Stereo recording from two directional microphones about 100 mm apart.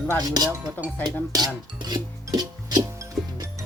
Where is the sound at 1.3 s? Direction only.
45° right (ahead or behind).